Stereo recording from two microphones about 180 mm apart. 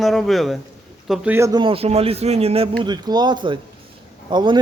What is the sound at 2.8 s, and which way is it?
Speech, 25° right (ahead or behind).